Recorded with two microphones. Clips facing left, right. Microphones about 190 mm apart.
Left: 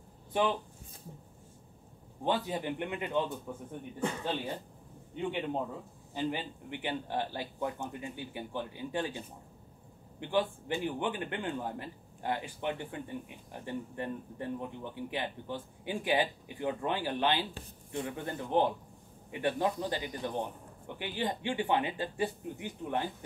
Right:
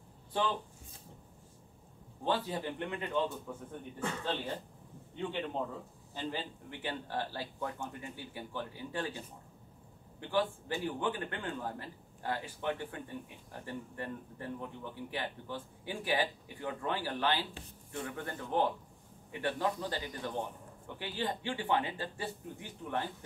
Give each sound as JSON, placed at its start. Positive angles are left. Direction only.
{"t": 0.3, "sound": "speech", "side_deg": 15}
{"t": 2.2, "sound": "speech", "side_deg": 15}
{"t": 10.2, "sound": "a man's voice", "side_deg": 20}